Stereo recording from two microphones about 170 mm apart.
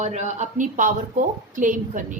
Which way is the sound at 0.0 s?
45° right (ahead or behind).